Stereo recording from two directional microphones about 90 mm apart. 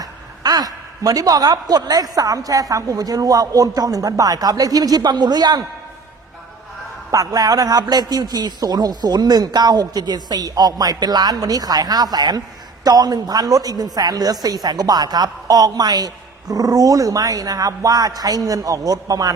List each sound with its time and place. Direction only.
0.0 s a woman's voice: 45° right (ahead or behind)
7.1 s a woman's voice: 40° right (ahead or behind)